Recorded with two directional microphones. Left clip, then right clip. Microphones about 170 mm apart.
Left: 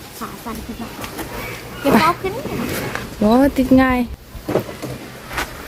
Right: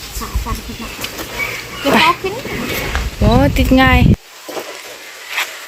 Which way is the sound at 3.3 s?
15° left (ahead or behind).